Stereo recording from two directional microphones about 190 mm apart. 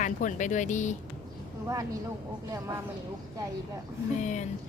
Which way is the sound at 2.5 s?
15° right (ahead or behind).